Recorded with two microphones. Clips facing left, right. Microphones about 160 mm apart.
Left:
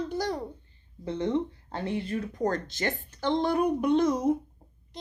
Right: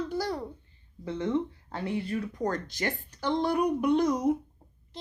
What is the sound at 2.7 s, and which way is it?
A child's voice, 25° left (ahead or behind).